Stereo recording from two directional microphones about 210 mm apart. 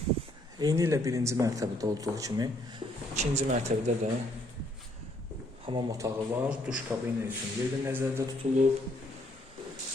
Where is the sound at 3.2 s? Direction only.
30° right (ahead or behind).